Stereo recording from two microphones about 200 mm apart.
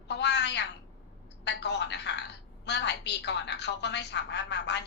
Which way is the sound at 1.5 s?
60° left (ahead or behind).